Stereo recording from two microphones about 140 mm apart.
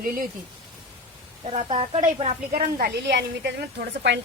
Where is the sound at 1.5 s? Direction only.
40° right (ahead or behind).